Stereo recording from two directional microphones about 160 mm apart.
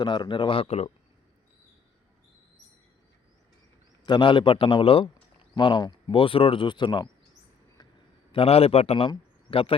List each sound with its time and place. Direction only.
0.0 s speech: 30° left (ahead or behind)
4.0 s speech: 30° left (ahead or behind)
8.3 s a man's voice: 35° left (ahead or behind)